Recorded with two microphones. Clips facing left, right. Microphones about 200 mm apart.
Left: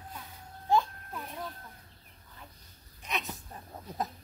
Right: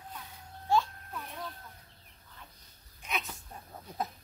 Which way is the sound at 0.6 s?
15° left (ahead or behind).